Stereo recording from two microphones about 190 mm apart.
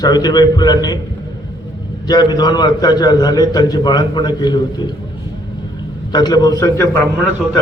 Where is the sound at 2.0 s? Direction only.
20° left (ahead or behind).